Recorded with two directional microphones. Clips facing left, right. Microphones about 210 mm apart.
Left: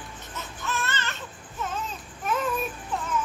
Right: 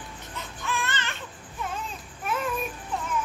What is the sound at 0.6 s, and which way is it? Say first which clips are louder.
Baby cry: even; 15° right (ahead or behind).